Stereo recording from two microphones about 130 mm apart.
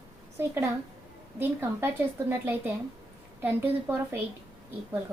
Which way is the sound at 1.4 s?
15° right (ahead or behind).